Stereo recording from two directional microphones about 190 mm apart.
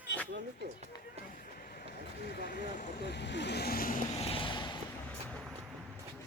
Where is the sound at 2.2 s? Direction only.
60° left (ahead or behind).